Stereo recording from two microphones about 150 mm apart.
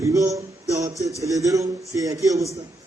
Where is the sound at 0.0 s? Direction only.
20° right (ahead or behind).